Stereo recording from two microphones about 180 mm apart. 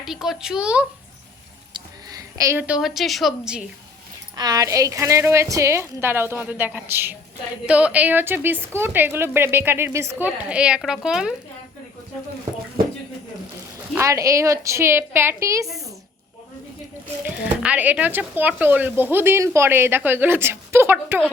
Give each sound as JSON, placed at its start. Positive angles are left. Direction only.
{"t": 0.0, "sound": "speech", "side_deg": 0}
{"t": 2.4, "sound": "a woman's voice", "side_deg": -10}
{"t": 4.4, "sound": "speech", "side_deg": -20}
{"t": 13.9, "sound": "speech", "side_deg": -15}
{"t": 17.2, "sound": "speech", "side_deg": -5}